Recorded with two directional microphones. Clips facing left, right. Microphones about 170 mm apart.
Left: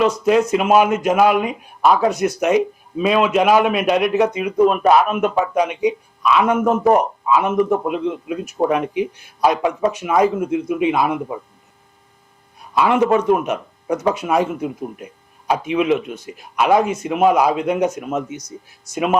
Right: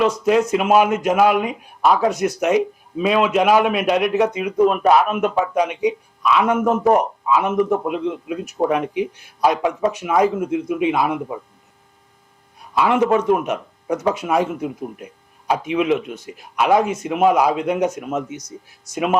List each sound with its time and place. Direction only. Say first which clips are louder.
0.0 s speech: left 1 dB; 10° left (ahead or behind)
11.2 s speech: left 1 dB; 25° left (ahead or behind)
12.7 s speech: left 1 dB; 15° left (ahead or behind)